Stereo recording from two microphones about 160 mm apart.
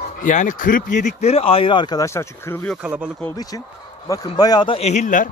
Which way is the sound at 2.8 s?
10° right (ahead or behind).